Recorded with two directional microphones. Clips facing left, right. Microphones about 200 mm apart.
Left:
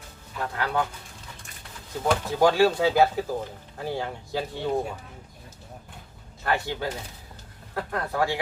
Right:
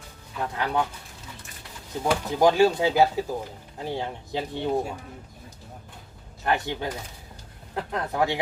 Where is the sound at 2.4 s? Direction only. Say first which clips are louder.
Right 1 dB; 20° right (ahead or behind).